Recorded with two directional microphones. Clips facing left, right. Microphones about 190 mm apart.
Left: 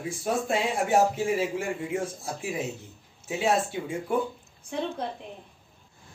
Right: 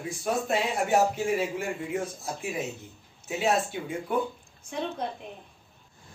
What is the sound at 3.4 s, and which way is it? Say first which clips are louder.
Speech: left 1 dB; 30° left (ahead or behind).